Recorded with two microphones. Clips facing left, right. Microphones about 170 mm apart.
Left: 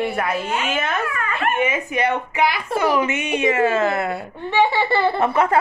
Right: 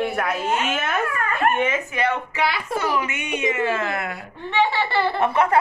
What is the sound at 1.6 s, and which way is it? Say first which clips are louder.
Speech: left 2 dB; 10° left (ahead or behind).